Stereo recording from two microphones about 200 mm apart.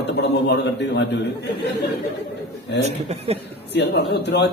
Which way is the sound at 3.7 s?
60° left (ahead or behind).